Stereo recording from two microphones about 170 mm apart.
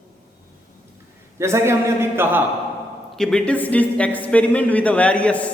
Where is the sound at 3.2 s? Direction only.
5° left (ahead or behind).